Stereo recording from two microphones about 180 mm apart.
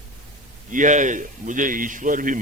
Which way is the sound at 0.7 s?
45° right (ahead or behind).